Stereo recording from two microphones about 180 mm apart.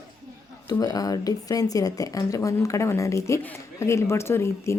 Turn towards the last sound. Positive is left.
turn(degrees=15)  # may be behind; listen again after turning